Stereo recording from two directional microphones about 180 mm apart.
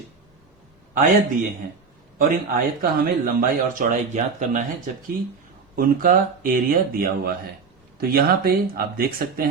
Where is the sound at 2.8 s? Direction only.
50° right (ahead or behind).